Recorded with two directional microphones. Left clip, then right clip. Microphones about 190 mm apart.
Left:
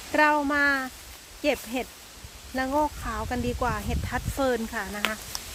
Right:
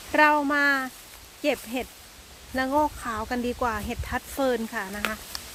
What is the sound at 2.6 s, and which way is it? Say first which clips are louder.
Speech: right 2 dB; 20° right (ahead or behind).